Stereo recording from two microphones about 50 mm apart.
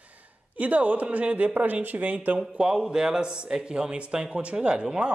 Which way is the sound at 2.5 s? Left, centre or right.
Centre.